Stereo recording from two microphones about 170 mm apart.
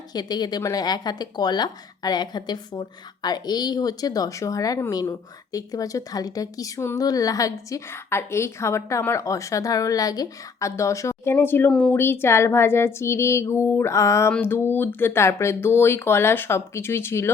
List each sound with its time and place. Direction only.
0.1 s speech: 25° left (ahead or behind)